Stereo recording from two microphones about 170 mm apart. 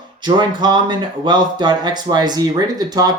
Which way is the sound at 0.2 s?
25° right (ahead or behind).